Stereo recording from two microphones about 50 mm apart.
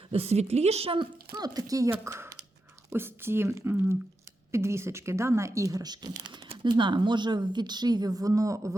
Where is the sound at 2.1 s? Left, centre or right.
Right.